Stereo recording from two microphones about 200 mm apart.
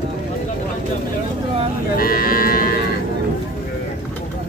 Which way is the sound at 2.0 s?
45° left (ahead or behind).